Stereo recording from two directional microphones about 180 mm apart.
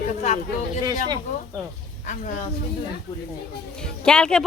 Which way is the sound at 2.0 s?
45° left (ahead or behind).